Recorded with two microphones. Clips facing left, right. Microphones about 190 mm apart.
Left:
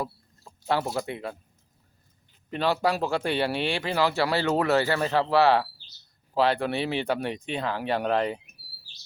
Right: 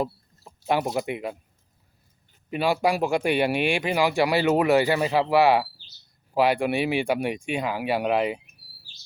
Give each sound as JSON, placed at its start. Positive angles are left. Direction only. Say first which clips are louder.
{"t": 0.4, "sound": "speech", "louder": "right 2 dB", "side_deg": -15}
{"t": 2.5, "sound": "speech", "louder": "right 2 dB", "side_deg": -10}